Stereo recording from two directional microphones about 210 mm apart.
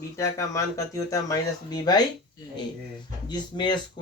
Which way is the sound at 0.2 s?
15° left (ahead or behind).